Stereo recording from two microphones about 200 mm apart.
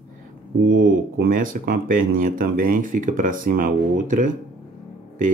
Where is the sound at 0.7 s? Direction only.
60° right (ahead or behind).